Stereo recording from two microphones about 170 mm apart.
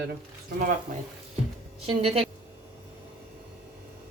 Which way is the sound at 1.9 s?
35° right (ahead or behind).